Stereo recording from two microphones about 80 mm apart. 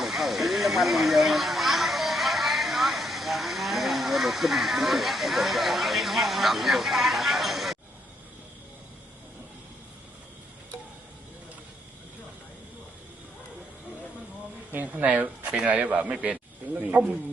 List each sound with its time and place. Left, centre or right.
0.0 s hiss: centre
14.7 s speech: right